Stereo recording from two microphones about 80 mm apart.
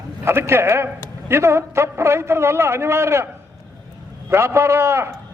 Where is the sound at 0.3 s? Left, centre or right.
Right.